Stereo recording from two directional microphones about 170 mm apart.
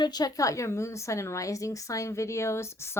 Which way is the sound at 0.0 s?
25° left (ahead or behind).